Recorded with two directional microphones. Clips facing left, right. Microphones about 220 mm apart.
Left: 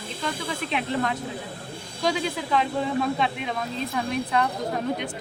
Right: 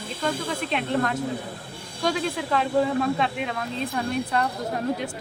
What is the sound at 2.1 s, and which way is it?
A woman's voice, centre (ahead or behind).